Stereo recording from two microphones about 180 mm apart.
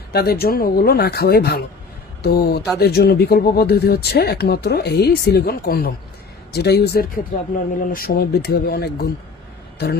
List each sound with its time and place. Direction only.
0.1 s speech: 60° left (ahead or behind)
7.9 s a man's voice: 55° left (ahead or behind)